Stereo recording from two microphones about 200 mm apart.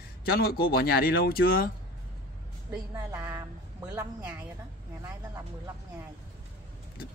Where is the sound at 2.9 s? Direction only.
15° right (ahead or behind).